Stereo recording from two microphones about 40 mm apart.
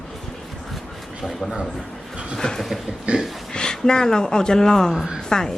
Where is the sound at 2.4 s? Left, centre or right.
Centre.